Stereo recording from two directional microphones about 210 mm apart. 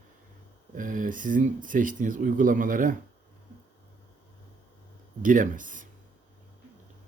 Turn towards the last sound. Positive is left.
turn(degrees=-40)  # may be behind; listen again after turning